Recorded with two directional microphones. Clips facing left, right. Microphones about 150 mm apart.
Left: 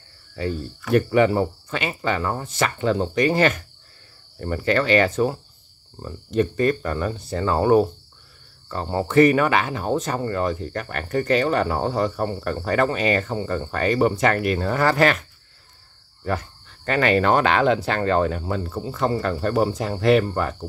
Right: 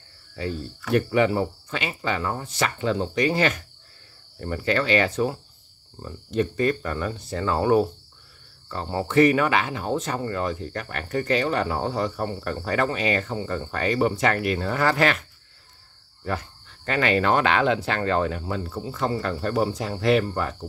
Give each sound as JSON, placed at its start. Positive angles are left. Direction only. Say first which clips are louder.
{"t": 0.9, "sound": "speech", "louder": "left 3 dB", "side_deg": 45}
{"t": 16.3, "sound": "speech", "louder": "left 3 dB", "side_deg": 50}